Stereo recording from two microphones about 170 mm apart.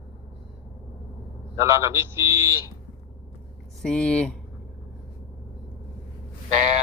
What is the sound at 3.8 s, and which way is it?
Speech, 5° left (ahead or behind).